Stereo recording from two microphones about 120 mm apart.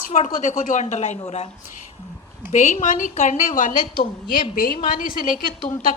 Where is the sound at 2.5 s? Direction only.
80° left.